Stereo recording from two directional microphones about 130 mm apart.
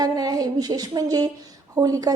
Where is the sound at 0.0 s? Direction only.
30° right (ahead or behind).